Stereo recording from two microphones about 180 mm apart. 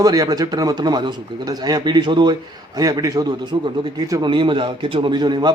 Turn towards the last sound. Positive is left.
turn(degrees=-25)  # may be behind; listen again after turning